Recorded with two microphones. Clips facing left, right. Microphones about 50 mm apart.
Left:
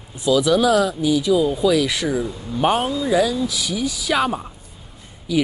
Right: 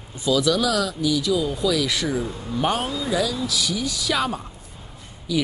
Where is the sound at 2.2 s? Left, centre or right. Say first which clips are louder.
Left 2 dB; right.